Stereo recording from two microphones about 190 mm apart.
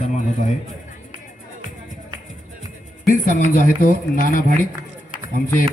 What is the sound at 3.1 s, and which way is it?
Speech, 45° left (ahead or behind).